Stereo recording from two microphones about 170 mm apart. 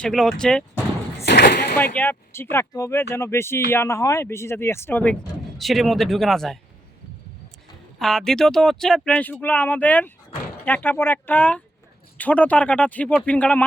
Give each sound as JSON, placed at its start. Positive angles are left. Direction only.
{"t": 0.0, "sound": "speech", "side_deg": 0}
{"t": 1.2, "sound": "a sound", "side_deg": 75}
{"t": 2.0, "sound": "speech", "side_deg": 15}
{"t": 5.5, "sound": "speech", "side_deg": 0}
{"t": 7.9, "sound": "speech", "side_deg": 0}